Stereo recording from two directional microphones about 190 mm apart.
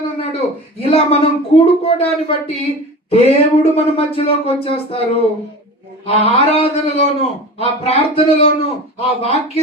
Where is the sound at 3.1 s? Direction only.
30° left (ahead or behind).